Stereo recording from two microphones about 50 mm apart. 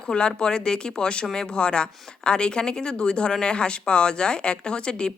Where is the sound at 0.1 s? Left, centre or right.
Centre.